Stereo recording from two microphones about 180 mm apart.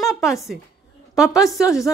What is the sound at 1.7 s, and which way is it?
Speech, 15° left (ahead or behind).